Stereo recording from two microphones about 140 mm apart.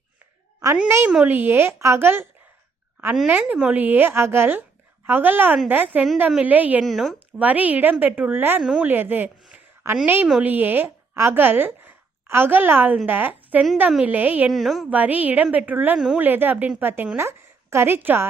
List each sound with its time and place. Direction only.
0.9 s a woman's voice: 20° right (ahead or behind)
6.8 s speech: centre (ahead or behind)
7.4 s a woman's voice: 10° right (ahead or behind)
8.6 s a woman's voice: centre (ahead or behind)
8.9 s a woman's voice: 15° right (ahead or behind)
14.5 s a woman's voice: centre (ahead or behind)
14.9 s a woman's voice: 10° right (ahead or behind)
16.2 s a woman's voice: 15° right (ahead or behind)